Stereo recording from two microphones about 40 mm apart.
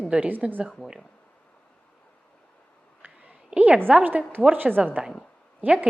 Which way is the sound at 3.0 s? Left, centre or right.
Right.